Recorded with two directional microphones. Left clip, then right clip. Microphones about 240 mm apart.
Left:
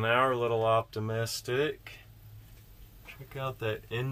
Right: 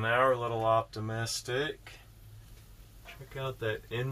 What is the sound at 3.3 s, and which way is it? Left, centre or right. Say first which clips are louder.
Speech: left 1 dB; centre.